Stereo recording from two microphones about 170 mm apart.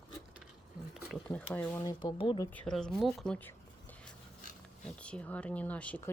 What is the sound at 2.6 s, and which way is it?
Speech, 5° left (ahead or behind).